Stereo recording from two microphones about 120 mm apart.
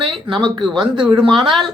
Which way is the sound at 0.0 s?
40° right (ahead or behind).